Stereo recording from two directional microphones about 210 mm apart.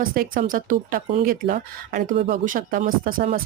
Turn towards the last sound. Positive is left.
turn(degrees=-40)  # may be behind; listen again after turning